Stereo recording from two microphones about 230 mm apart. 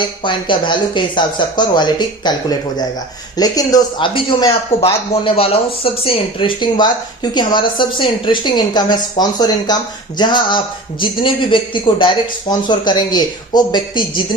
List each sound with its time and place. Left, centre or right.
0.3 s speech: left